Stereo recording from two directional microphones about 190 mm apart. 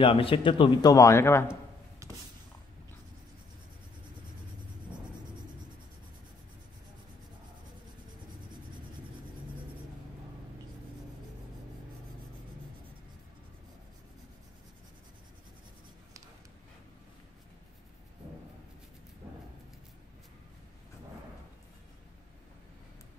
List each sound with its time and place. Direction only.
0.0 s a man's voice: 30° left (ahead or behind)
0.9 s speech: 15° left (ahead or behind)
2.0 s a sound: 15° right (ahead or behind)